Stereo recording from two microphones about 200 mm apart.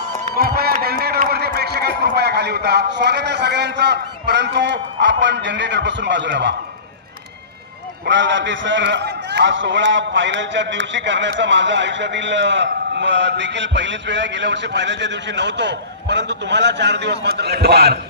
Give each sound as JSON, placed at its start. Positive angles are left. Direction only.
{"t": 0.3, "sound": "speech", "side_deg": -50}
{"t": 8.0, "sound": "a man's voice", "side_deg": -65}